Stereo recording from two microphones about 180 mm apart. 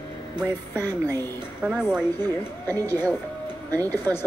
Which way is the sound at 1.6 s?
5° right (ahead or behind).